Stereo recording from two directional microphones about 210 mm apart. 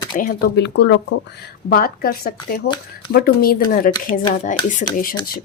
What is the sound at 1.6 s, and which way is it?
A woman's voice, 45° left (ahead or behind).